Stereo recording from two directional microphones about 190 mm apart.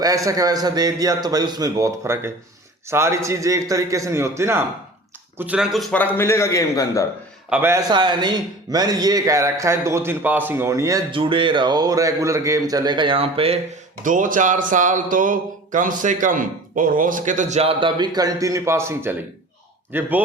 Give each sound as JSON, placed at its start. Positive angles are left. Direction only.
{"t": 0.0, "sound": "a man's voice", "side_deg": -20}
{"t": 7.5, "sound": "a man's voice", "side_deg": -10}
{"t": 7.9, "sound": "a man's voice", "side_deg": -25}
{"t": 14.0, "sound": "a man's voice", "side_deg": -45}